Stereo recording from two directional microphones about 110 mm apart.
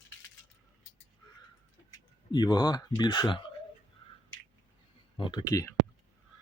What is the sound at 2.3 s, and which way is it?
Speech, 35° left (ahead or behind).